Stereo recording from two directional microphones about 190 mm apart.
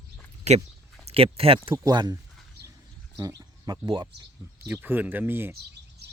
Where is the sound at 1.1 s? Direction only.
30° right (ahead or behind).